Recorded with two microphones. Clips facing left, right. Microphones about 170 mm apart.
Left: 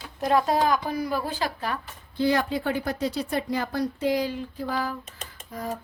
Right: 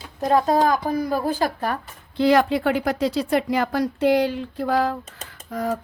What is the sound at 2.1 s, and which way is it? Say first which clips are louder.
Speech: right 6 dB; 85° right.